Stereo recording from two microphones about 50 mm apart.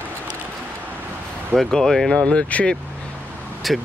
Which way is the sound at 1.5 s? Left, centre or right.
Centre.